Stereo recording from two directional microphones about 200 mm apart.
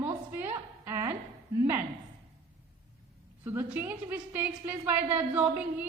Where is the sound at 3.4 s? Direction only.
10° right (ahead or behind).